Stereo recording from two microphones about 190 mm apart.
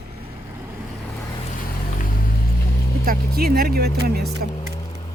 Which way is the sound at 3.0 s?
55° right (ahead or behind).